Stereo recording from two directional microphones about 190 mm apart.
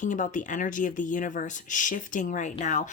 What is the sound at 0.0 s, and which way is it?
Speech, 45° left (ahead or behind).